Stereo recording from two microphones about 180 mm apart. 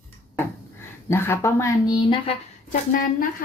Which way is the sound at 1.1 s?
15° left (ahead or behind).